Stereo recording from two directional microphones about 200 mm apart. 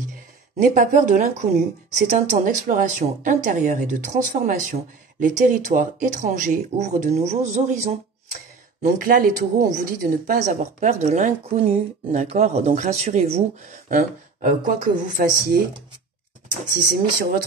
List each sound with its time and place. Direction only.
0.6 s speech: 40° right (ahead or behind)
8.8 s speech: 45° right (ahead or behind)
16.7 s speech: 45° right (ahead or behind)